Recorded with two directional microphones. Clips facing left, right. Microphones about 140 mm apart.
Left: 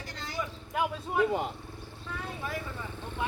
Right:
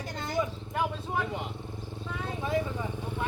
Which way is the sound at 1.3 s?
40° left (ahead or behind).